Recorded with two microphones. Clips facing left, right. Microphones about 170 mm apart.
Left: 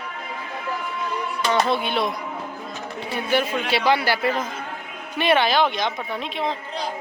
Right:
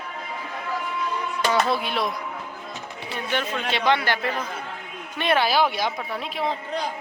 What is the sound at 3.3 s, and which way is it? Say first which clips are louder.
A man's voice: left 4 dB; 10° left (ahead or behind).